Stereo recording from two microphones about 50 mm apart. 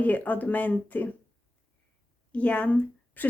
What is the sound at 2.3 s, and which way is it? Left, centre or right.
Speech, left.